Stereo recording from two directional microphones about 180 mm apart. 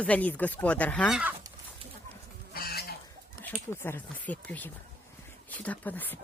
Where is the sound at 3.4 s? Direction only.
10° left (ahead or behind).